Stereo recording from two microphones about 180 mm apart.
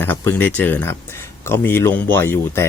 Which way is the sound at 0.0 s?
10° left (ahead or behind).